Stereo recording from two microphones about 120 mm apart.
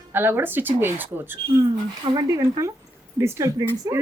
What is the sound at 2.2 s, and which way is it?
A woman's voice, 30° right (ahead or behind).